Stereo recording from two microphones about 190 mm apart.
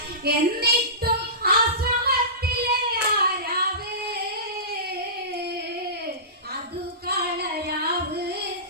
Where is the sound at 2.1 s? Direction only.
55° right (ahead or behind).